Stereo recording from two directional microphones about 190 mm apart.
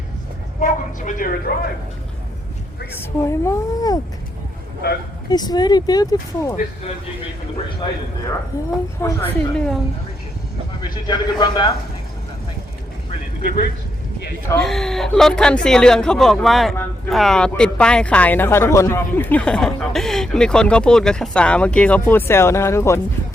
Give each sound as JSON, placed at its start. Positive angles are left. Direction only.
{"t": 0.6, "sound": "a woman's voice", "side_deg": 45}
{"t": 3.0, "sound": "a woman's voice", "side_deg": 15}
{"t": 4.8, "sound": "speech", "side_deg": 60}
{"t": 5.3, "sound": "speech", "side_deg": 20}
{"t": 8.5, "sound": "a woman's voice", "side_deg": 15}
{"t": 10.8, "sound": "speech", "side_deg": 20}
{"t": 13.4, "sound": "a woman's voice", "side_deg": 45}
{"t": 14.5, "sound": "speech", "side_deg": 0}